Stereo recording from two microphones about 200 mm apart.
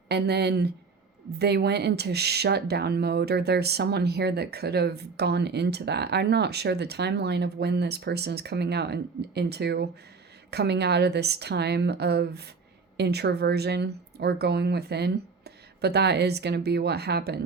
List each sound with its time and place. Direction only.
0.1 s speech: 55° right (ahead or behind)